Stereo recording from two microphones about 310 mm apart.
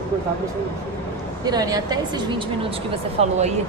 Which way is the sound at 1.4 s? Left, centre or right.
Centre.